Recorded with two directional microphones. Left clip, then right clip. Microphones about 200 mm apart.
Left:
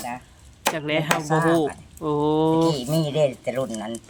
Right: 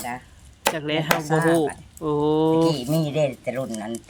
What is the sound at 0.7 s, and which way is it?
Speech, centre (ahead or behind).